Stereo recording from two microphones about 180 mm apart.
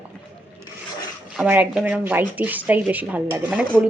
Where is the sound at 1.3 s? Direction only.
10° right (ahead or behind).